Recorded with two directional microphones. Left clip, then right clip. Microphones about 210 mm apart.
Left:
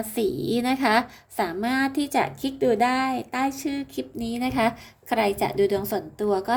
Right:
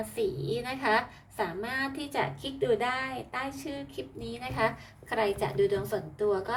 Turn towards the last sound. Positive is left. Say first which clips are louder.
# left 4 dB
turn(degrees=50)  # may be behind; listen again after turning